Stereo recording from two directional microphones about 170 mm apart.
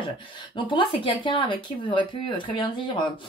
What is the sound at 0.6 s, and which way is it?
Speech, 30° left (ahead or behind).